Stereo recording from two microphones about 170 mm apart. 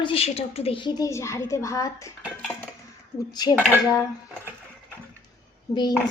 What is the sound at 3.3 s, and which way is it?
Speech, 25° left (ahead or behind).